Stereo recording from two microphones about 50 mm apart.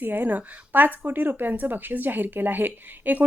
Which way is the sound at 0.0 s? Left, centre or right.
Right.